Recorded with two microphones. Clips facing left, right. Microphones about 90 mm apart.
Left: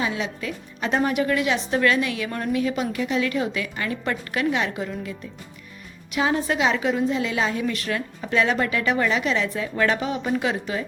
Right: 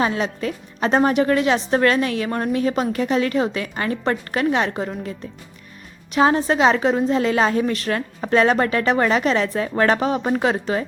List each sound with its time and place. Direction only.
0.0 s a woman's voice: 40° right (ahead or behind)
6.1 s a woman's voice: 40° right (ahead or behind)